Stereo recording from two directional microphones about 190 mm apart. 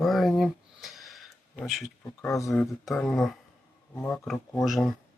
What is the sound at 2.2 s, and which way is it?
Speech, 15° left (ahead or behind).